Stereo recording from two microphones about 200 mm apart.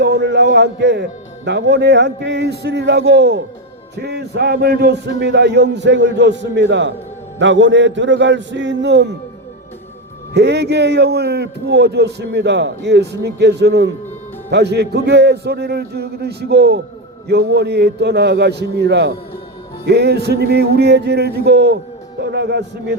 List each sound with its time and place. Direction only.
0.0 s a sound: 55° right (ahead or behind)
1.5 s a man's voice: 60° right (ahead or behind)
10.3 s a man's voice: 60° right (ahead or behind)